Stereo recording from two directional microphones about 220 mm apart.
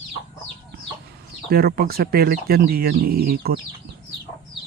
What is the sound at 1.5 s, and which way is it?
Speech, 45° right (ahead or behind).